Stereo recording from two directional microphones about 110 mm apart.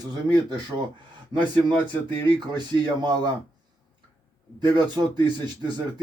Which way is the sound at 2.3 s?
40° right (ahead or behind).